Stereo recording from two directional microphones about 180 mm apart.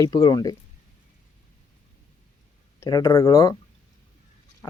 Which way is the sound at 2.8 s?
15° left (ahead or behind).